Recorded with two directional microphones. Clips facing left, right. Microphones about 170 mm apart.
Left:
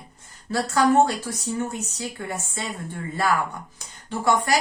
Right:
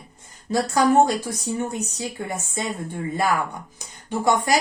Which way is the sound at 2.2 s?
25° right (ahead or behind).